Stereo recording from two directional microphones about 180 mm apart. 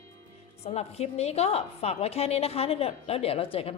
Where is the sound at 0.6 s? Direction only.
35° left (ahead or behind).